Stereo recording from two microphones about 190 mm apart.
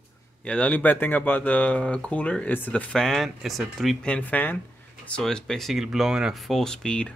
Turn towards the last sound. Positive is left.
turn(degrees=5)  # may be behind; listen again after turning